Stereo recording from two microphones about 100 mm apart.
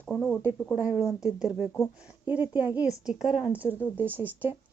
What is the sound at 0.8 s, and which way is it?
Speech, 10° right (ahead or behind).